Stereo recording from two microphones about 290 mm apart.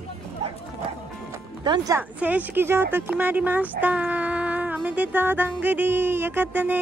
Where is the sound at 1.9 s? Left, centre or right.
Centre.